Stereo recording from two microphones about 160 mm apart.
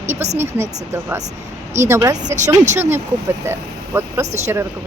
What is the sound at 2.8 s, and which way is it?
Speech, 15° right (ahead or behind).